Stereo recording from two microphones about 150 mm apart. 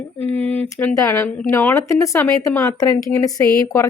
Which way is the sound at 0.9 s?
20° left (ahead or behind).